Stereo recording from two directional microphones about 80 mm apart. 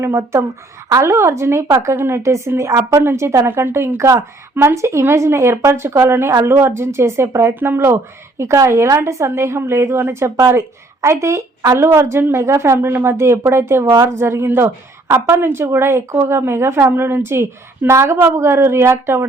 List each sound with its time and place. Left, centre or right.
0.0 s a woman's voice: right
3.0 s a woman's voice: right